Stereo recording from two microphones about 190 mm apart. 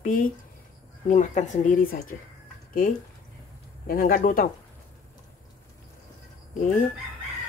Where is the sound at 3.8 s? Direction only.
50° left (ahead or behind).